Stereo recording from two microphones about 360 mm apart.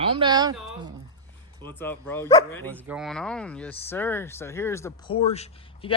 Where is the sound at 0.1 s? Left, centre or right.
Centre.